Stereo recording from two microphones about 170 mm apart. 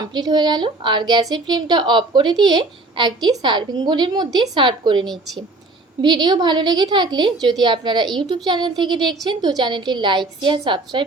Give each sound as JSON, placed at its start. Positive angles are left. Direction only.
{"t": 0.1, "sound": "a woman's voice", "side_deg": -25}